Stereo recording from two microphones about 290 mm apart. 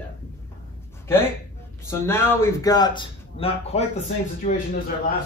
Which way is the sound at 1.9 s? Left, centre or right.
Centre.